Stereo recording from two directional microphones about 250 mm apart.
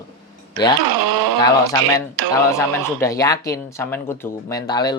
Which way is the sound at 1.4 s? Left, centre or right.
Centre.